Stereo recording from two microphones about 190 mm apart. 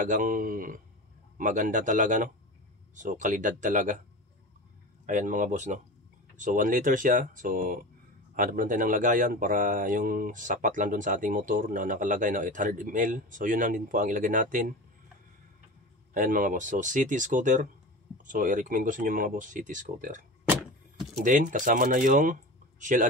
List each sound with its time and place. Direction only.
0.0 s speech: 45° right (ahead or behind)
5.0 s speech: 45° right (ahead or behind)
16.1 s speech: 45° right (ahead or behind)